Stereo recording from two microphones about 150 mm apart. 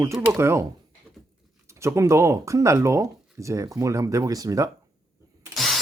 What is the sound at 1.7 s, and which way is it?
Speech, 20° right (ahead or behind).